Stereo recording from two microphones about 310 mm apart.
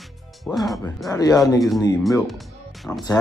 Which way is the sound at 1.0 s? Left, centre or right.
Centre.